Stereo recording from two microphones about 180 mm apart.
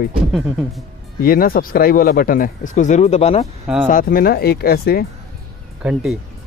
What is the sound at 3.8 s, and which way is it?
Speech, 50° left (ahead or behind).